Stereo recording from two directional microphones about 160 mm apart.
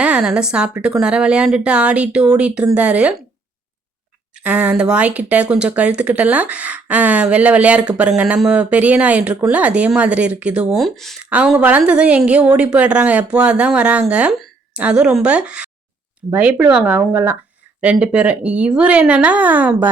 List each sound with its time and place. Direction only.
0.0 s speech: 5° right (ahead or behind)
4.4 s speech: 10° right (ahead or behind)
11.3 s speech: 10° right (ahead or behind)